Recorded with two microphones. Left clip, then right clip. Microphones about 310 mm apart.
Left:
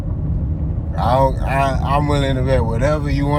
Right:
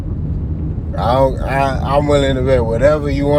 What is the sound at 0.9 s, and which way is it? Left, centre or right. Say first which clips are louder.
Speech: right 2 dB; centre.